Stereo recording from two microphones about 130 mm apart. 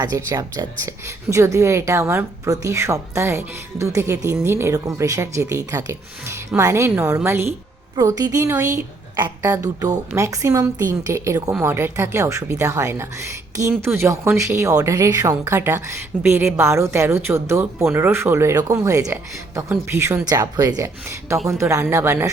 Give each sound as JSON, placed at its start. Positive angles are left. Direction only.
{"t": 0.0, "sound": "a woman's voice", "side_deg": -25}